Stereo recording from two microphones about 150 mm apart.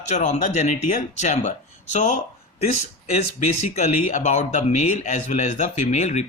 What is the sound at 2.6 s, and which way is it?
Speech, 50° left (ahead or behind).